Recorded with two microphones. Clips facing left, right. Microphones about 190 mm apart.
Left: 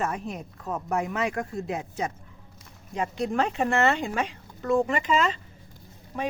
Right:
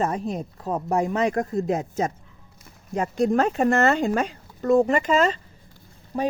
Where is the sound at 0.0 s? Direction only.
35° right (ahead or behind).